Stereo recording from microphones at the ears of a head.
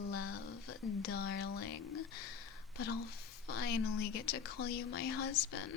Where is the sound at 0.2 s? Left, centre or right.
Left.